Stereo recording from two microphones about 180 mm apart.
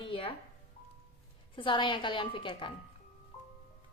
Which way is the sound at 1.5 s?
25° left (ahead or behind).